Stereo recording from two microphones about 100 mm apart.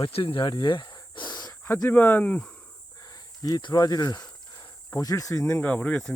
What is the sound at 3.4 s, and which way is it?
Speech, 45° left (ahead or behind).